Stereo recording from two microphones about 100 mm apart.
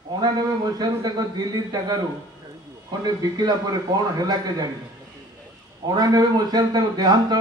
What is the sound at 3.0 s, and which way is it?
A man's voice, 40° right (ahead or behind).